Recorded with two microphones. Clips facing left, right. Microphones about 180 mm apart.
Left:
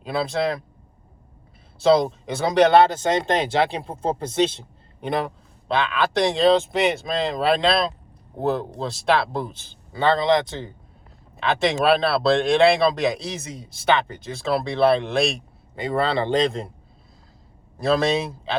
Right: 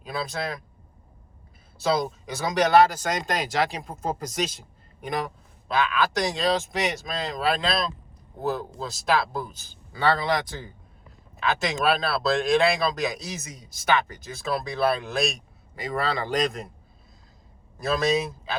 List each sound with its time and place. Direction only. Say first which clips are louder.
0.0 s speech: left 7 dB; 30° left (ahead or behind)
1.8 s speech: left 7 dB; 30° left (ahead or behind)
17.7 s speech: left 3 dB; 30° left (ahead or behind)